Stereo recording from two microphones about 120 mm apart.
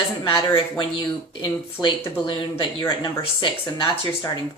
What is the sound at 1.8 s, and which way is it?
Speech, 5° right (ahead or behind).